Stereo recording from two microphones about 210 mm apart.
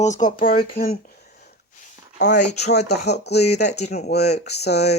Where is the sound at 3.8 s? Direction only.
35° left (ahead or behind).